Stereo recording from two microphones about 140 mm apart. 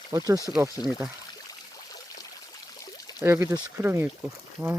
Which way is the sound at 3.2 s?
15° right (ahead or behind).